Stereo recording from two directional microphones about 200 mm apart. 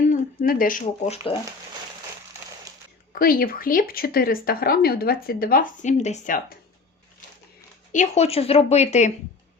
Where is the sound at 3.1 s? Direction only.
45° left (ahead or behind).